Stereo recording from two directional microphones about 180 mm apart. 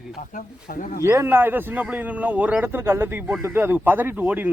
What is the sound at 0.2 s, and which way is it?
Speech, 45° left (ahead or behind).